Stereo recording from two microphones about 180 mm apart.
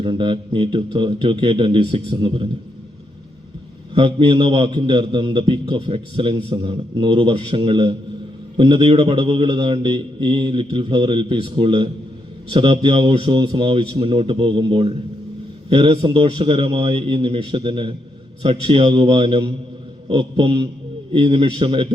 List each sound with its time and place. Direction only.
0.0 s a man's voice: 25° right (ahead or behind)
3.9 s a man's voice: 30° right (ahead or behind)